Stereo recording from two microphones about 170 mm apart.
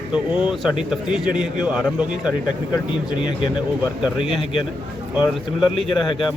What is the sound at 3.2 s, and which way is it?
Speech, 30° left (ahead or behind).